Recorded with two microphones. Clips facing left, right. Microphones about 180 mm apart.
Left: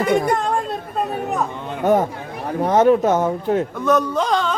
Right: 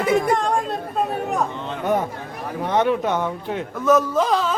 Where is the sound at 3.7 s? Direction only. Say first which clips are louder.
Right 1 dB; centre (ahead or behind).